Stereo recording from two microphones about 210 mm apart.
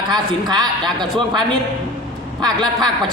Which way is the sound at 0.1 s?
20° right (ahead or behind).